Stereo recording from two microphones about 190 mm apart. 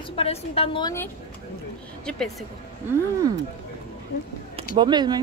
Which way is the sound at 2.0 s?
5° left (ahead or behind).